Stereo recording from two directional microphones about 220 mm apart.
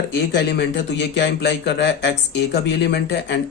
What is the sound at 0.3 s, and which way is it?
Speech, 50° left (ahead or behind).